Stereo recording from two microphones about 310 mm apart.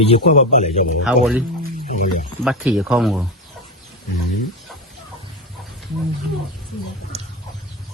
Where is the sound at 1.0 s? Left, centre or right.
Centre.